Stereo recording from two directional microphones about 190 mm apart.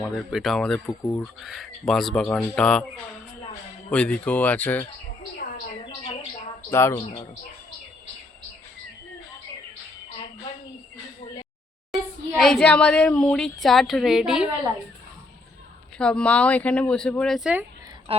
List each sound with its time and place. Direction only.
0.0 s speech: centre (ahead or behind)
3.9 s speech: 5° left (ahead or behind)
6.7 s speech: 15° left (ahead or behind)
11.9 s speech: centre (ahead or behind)
16.0 s speech: 5° left (ahead or behind)
18.1 s speech: 30° right (ahead or behind)